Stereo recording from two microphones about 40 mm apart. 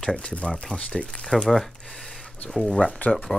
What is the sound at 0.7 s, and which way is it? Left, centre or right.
Speech, centre.